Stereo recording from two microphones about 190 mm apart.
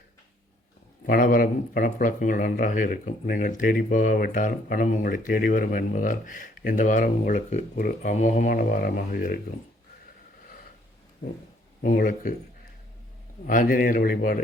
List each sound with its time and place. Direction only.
1.0 s speech: 45° left (ahead or behind)
11.8 s speech: 45° left (ahead or behind)
13.5 s speech: 45° left (ahead or behind)